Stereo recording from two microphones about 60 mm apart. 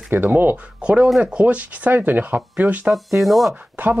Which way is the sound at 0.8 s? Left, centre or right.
Right.